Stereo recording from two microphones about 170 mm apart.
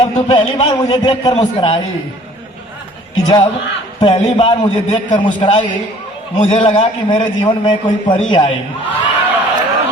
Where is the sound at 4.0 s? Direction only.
35° left (ahead or behind).